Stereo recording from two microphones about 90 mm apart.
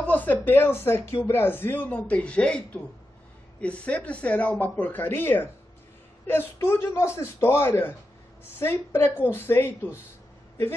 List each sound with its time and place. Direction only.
0.0 s speech: 20° left (ahead or behind)